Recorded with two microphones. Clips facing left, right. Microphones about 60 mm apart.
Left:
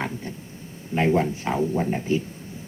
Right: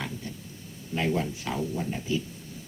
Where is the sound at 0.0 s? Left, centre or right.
Left.